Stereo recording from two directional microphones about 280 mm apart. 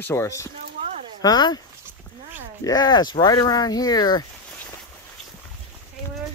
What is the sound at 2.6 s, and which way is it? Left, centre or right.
Speech, centre.